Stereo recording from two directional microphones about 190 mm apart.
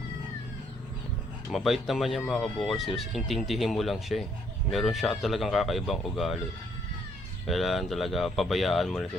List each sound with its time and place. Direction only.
1.5 s speech: centre (ahead or behind)
7.4 s speech: centre (ahead or behind)